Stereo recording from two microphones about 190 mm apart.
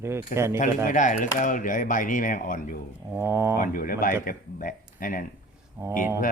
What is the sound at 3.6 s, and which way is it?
Speech, 45° left (ahead or behind).